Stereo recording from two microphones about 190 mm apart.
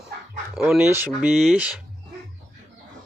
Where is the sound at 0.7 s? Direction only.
10° right (ahead or behind).